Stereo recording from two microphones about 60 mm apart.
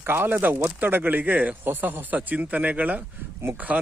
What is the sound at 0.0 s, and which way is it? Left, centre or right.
Speech, right.